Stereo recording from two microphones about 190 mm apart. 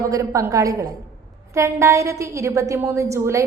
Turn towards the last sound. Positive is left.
turn(degrees=-15)  # may be behind; listen again after turning